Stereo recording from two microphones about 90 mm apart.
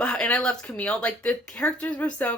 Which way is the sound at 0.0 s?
10° left (ahead or behind).